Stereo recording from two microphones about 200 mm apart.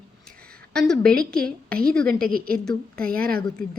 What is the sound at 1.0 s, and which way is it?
Speech, 50° right (ahead or behind).